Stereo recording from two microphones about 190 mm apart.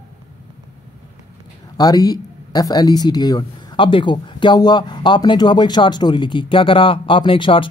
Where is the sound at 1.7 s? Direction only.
20° left (ahead or behind).